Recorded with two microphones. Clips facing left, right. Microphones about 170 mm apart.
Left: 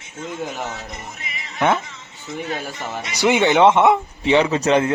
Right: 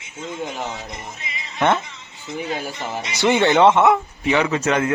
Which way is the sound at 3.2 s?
15° left (ahead or behind).